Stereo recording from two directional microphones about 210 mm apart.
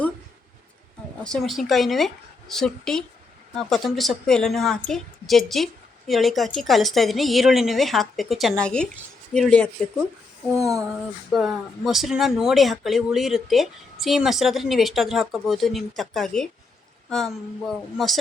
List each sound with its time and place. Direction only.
1.2 s a woman's voice: centre (ahead or behind)
10.6 s a sound: 15° right (ahead or behind)
11.3 s a woman's voice: centre (ahead or behind)